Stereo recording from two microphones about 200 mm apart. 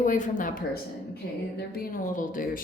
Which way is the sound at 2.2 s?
40° left (ahead or behind).